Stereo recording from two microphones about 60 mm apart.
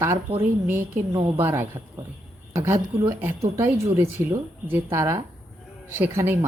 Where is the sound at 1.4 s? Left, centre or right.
Right.